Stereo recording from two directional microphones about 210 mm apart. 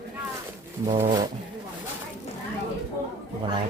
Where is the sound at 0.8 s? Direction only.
30° right (ahead or behind).